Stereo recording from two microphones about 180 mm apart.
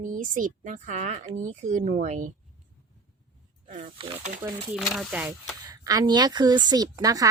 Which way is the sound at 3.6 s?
45° right (ahead or behind).